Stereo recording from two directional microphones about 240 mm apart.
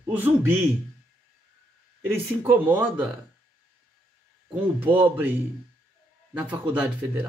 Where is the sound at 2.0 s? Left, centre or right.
Centre.